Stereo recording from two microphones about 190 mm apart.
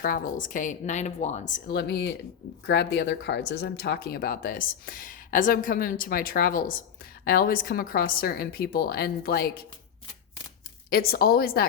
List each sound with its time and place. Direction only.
0.0 s speech: 45° left (ahead or behind)
10.8 s speech: 55° left (ahead or behind)